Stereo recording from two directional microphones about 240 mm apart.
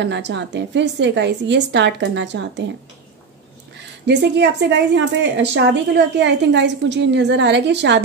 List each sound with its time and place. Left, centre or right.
0.0 s a woman's voice: right
4.0 s a woman's voice: right